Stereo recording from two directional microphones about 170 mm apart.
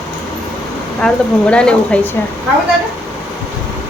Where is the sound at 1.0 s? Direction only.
5° left (ahead or behind).